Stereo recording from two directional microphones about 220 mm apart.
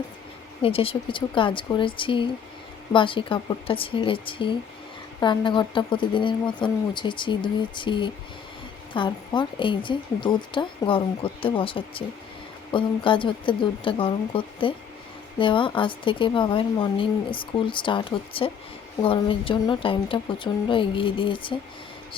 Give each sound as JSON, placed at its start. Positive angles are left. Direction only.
{"t": 0.6, "sound": "speech", "side_deg": 25}